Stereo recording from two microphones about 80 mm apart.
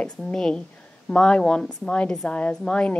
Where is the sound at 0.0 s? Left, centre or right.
Centre.